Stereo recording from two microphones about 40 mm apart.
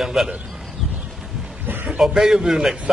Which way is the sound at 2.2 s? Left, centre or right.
Centre.